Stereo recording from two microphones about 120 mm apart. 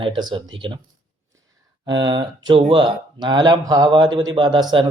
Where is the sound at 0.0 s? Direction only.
40° right (ahead or behind).